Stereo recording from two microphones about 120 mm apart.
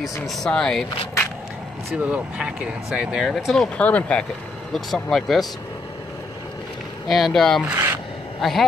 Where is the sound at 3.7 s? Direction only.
10° left (ahead or behind).